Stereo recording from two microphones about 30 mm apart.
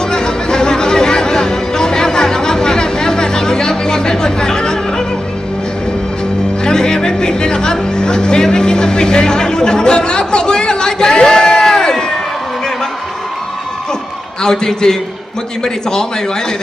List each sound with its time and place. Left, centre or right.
0.1 s chatter: left
6.7 s music: left
14.4 s a man's voice: left